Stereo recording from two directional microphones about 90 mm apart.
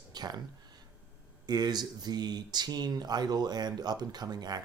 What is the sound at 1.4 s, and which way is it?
Speech, 50° right (ahead or behind).